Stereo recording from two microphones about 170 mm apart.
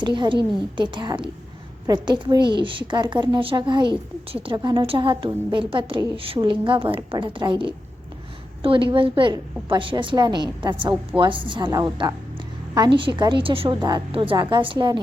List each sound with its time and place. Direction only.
0.2 s a woman's voice: 30° right (ahead or behind)